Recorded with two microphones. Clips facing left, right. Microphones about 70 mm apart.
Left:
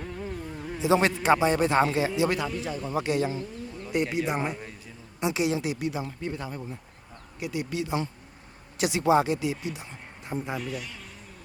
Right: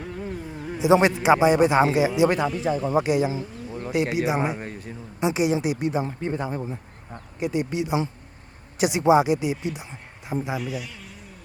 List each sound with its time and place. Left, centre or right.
0.0 s a man's voice: centre
2.5 s a man's voice: centre
2.7 s speech: right
3.0 s speech: centre
3.7 s bird: right
4.3 s a man's voice: centre
4.5 s a man's voice: right
5.2 s a woman's voice: right
10.2 s speech: centre